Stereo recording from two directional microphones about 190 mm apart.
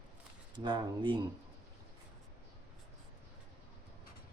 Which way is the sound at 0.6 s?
25° right (ahead or behind).